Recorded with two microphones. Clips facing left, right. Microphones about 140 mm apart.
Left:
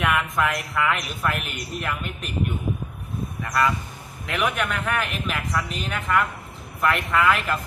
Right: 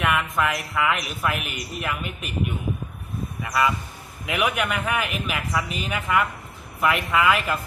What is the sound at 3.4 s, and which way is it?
Speech, 5° right (ahead or behind).